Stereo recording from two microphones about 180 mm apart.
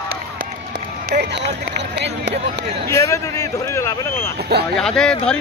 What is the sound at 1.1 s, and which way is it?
Speech, 70° right (ahead or behind).